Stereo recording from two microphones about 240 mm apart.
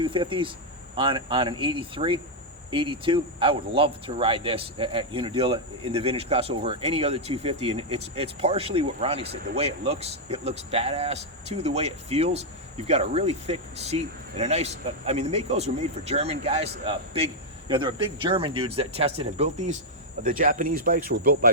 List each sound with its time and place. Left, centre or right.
0.0 s speech: right